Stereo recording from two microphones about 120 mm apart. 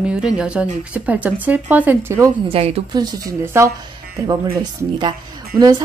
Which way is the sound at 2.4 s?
55° right (ahead or behind).